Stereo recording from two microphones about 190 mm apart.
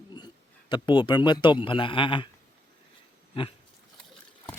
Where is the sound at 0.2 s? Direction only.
20° left (ahead or behind).